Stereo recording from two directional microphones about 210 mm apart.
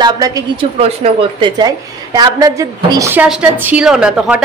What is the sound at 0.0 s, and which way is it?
Speech, 20° right (ahead or behind).